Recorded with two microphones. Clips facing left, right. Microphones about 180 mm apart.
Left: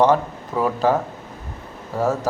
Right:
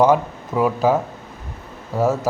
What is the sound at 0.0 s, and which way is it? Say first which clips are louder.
Speech: right 1 dB; 10° right (ahead or behind).